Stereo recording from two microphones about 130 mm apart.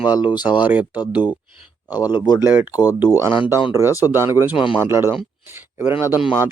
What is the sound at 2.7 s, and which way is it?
Speech, 30° left (ahead or behind).